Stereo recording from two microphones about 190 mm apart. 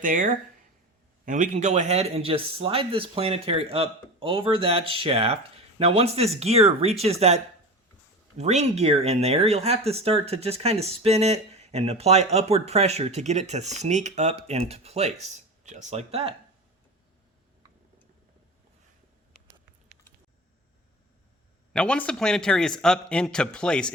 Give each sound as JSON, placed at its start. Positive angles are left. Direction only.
{"t": 0.0, "sound": "speech", "side_deg": -45}
{"t": 8.4, "sound": "speech", "side_deg": -35}
{"t": 21.7, "sound": "a man's voice", "side_deg": 5}